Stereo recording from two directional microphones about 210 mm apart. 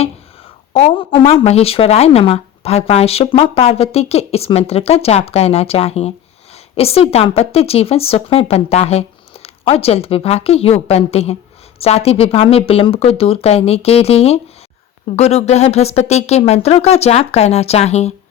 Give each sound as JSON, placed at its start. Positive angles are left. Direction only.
{"t": 0.7, "sound": "speech", "side_deg": 25}